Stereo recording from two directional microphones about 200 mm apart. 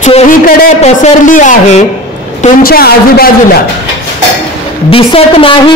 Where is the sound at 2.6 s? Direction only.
50° left (ahead or behind).